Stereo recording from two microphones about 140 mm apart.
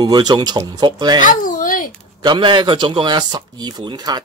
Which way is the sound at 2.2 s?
35° right (ahead or behind).